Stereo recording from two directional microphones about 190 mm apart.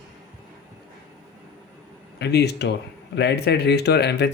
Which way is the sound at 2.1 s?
60° left (ahead or behind).